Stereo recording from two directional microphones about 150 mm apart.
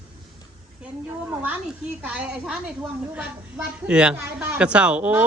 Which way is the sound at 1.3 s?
10° right (ahead or behind).